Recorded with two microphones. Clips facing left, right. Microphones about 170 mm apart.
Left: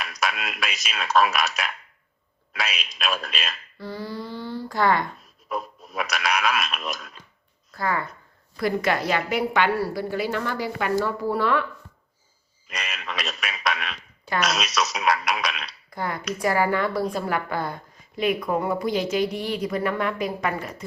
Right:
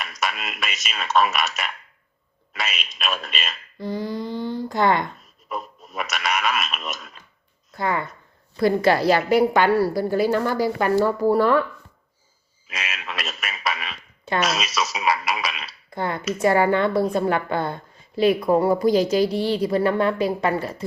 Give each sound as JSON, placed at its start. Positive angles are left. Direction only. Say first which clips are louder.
{"t": 0.0, "sound": "speech", "louder": "even", "side_deg": 0}
{"t": 3.8, "sound": "speech", "louder": "right 6 dB", "side_deg": -20}
{"t": 5.5, "sound": "speech", "louder": "left 1 dB", "side_deg": 0}
{"t": 7.8, "sound": "a woman's voice", "louder": "right 2 dB", "side_deg": -20}
{"t": 12.6, "sound": "speech", "louder": "right 1 dB", "side_deg": -5}
{"t": 15.9, "sound": "a woman's voice", "louder": "right 4 dB", "side_deg": -25}